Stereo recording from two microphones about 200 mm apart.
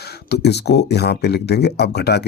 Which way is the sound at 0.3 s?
55° left (ahead or behind).